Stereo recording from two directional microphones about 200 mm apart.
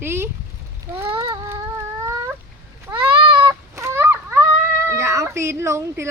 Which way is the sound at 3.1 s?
25° right (ahead or behind).